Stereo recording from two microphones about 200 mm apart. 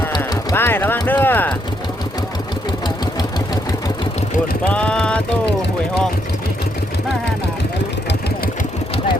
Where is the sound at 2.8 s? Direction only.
20° left (ahead or behind).